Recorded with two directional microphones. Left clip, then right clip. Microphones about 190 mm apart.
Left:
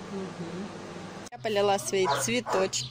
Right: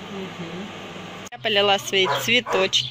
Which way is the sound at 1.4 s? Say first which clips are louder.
Right 6 dB; 10° left (ahead or behind).